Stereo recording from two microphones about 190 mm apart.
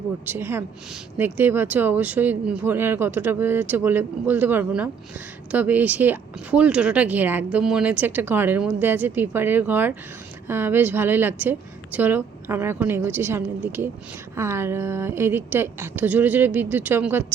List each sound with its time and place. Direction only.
0.3 s speech: 10° right (ahead or behind)